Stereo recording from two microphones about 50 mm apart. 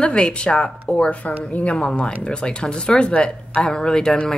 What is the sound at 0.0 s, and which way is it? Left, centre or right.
Speech, left.